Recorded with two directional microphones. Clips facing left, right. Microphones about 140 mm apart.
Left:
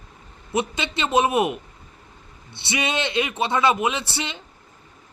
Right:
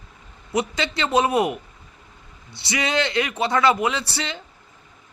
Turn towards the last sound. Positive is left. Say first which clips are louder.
# right 1 dB
turn(degrees=20)  # may be behind; listen again after turning